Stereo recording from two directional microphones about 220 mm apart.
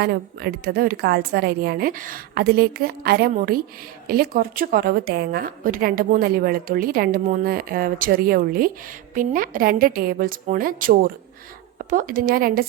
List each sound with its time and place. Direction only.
0.0 s a woman's voice: 45° right (ahead or behind)